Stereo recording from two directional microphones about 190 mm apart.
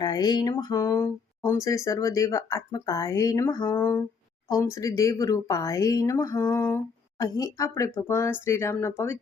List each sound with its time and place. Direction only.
0.0 s speech: 20° left (ahead or behind)